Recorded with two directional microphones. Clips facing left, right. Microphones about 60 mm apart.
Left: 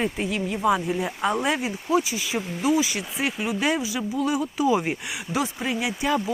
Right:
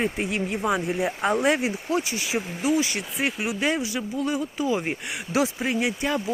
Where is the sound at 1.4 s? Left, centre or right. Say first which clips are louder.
Right 2 dB; centre.